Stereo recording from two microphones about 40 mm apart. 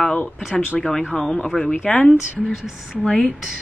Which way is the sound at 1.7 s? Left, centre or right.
Left.